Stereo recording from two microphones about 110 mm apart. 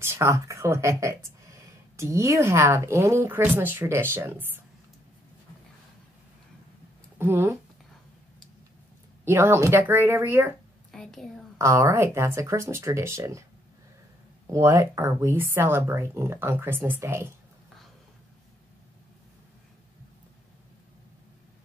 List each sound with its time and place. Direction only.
0.0 s speech: 25° right (ahead or behind)
7.2 s speech: 20° right (ahead or behind)
9.2 s speech: 20° right (ahead or behind)
10.9 s a woman's voice: 5° left (ahead or behind)
11.5 s speech: 25° right (ahead or behind)
14.5 s speech: 30° right (ahead or behind)